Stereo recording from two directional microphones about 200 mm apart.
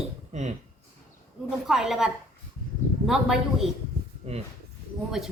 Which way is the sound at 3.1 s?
Centre (ahead or behind).